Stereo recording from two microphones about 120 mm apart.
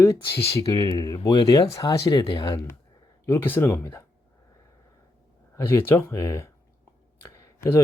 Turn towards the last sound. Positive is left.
turn(degrees=25)  # may be behind; listen again after turning